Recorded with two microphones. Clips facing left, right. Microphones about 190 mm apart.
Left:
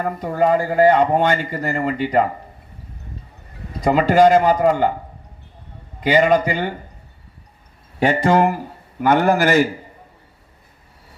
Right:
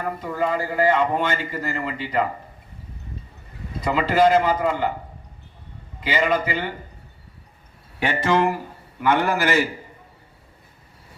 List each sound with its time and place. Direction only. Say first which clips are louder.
0.0 s a man's voice: left 6 dB; 45° left (ahead or behind)
3.8 s a man's voice: left 5 dB; 45° left (ahead or behind)
6.0 s a man's voice: left 7 dB; 45° left (ahead or behind)
7.9 s a man's voice: left 5 dB; 40° left (ahead or behind)